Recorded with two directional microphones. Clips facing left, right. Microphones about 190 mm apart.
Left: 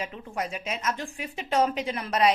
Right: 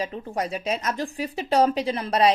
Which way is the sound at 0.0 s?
35° right (ahead or behind).